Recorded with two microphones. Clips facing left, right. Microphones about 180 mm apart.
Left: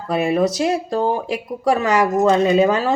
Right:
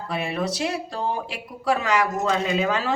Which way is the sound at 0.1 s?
45° left (ahead or behind).